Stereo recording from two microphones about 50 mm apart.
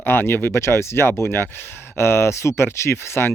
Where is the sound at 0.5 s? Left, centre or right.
Left.